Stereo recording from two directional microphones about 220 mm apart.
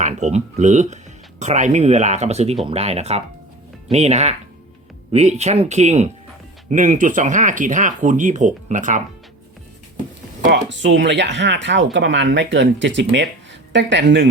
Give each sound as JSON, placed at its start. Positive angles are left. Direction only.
{"t": 0.0, "sound": "speech", "side_deg": -30}
{"t": 10.4, "sound": "speech", "side_deg": -50}